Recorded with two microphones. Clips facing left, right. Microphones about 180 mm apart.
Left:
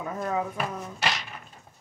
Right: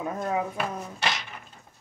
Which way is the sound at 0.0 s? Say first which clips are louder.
Right 1 dB; 15° right (ahead or behind).